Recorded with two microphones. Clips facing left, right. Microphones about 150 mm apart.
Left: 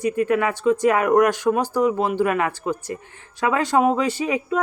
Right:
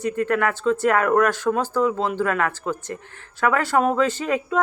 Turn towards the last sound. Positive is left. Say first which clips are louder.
# left 1 dB
turn(degrees=15)  # may be behind; listen again after turning